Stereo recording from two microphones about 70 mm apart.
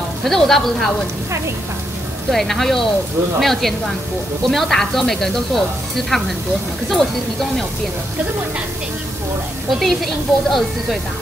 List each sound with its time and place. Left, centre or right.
0.2 s speech: centre
2.3 s speech: centre
9.7 s speech: centre